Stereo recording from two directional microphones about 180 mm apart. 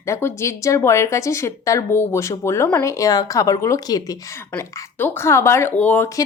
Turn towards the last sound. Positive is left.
turn(degrees=10)  # may be behind; listen again after turning